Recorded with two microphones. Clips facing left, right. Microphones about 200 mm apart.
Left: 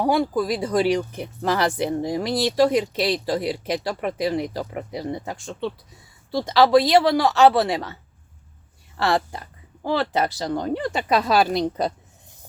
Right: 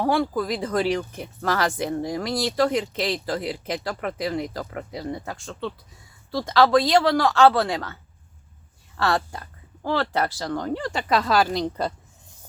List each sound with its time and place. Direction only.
0.0 s speech: 15° left (ahead or behind)
9.0 s speech: 20° left (ahead or behind)